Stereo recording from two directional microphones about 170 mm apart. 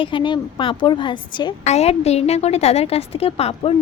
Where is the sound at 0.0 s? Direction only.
30° left (ahead or behind).